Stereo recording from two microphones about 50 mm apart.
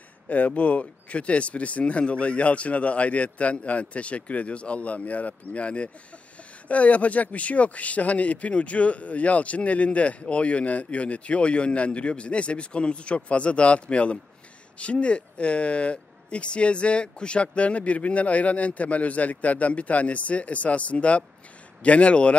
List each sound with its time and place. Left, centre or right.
0.3 s speech: left